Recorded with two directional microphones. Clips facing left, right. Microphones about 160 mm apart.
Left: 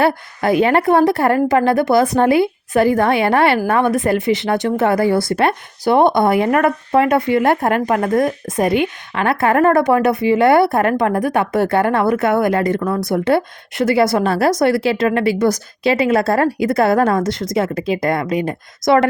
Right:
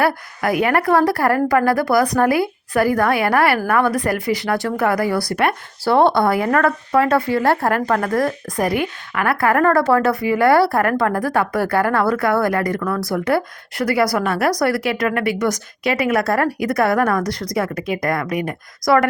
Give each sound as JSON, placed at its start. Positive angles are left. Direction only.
{"t": 0.0, "sound": "speech", "side_deg": 25}